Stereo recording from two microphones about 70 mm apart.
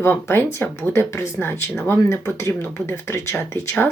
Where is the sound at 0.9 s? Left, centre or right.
Left.